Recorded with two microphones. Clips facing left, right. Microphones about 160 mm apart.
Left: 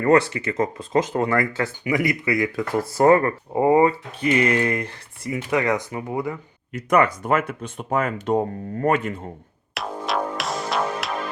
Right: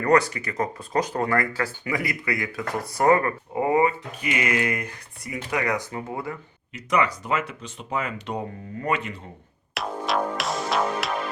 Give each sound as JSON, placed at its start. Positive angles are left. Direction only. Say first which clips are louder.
{"t": 0.0, "sound": "speech", "louder": "left 3 dB", "side_deg": 25}
{"t": 6.7, "sound": "speech", "louder": "left 5 dB", "side_deg": 50}
{"t": 9.8, "sound": "music", "louder": "even", "side_deg": 0}